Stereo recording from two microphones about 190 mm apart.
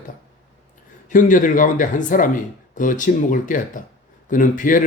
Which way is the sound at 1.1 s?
45° left (ahead or behind).